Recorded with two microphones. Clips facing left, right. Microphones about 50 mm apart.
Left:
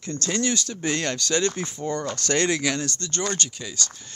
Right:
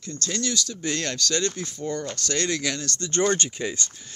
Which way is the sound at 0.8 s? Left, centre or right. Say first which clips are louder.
Left 3 dB; centre.